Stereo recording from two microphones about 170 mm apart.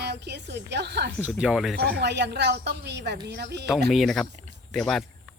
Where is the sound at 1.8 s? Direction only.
80° right.